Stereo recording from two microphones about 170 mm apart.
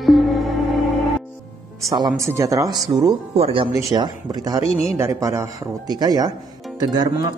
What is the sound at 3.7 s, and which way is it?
Speech, 25° right (ahead or behind).